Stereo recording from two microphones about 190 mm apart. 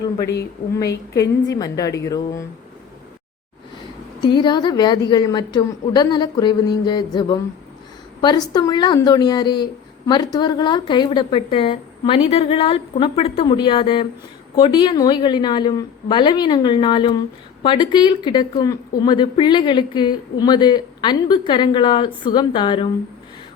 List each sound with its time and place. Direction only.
1.5 s a woman's voice: 20° left (ahead or behind)
4.2 s a woman's voice: 25° left (ahead or behind)